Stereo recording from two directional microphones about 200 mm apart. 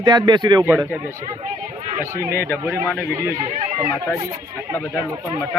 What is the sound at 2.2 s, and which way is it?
Speech, 10° right (ahead or behind).